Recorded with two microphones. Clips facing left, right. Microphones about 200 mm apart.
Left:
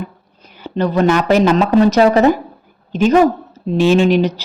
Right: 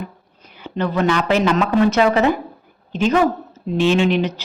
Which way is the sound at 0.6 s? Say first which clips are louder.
Left 5 dB; 40° left (ahead or behind).